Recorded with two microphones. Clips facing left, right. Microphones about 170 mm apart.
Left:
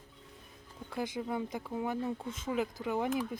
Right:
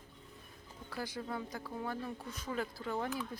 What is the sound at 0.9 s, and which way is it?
A woman's voice, 20° left (ahead or behind).